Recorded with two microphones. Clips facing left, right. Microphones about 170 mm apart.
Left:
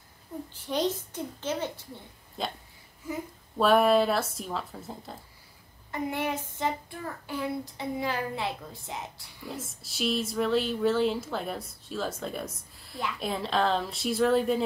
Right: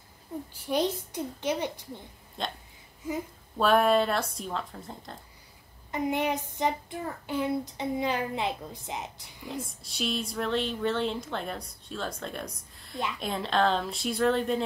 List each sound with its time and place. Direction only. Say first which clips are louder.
0.7 s a child's voice: right 1 dB; 10° right (ahead or behind)
2.4 s speech: left 1 dB; 5° left (ahead or behind)
3.5 s speech: left 1 dB; centre (ahead or behind)
5.9 s child singing: right 3 dB; 20° right (ahead or behind)
9.5 s speech: right 2 dB; centre (ahead or behind)